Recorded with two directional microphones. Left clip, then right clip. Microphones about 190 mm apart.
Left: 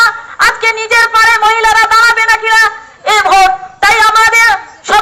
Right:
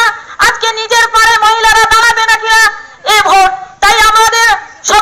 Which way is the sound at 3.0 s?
15° left (ahead or behind).